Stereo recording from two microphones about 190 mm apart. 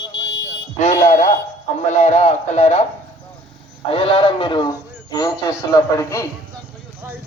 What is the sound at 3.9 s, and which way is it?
Speech, 30° left (ahead or behind).